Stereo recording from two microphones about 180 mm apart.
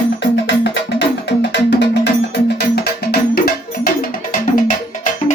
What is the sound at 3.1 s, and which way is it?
Music, 55° left (ahead or behind).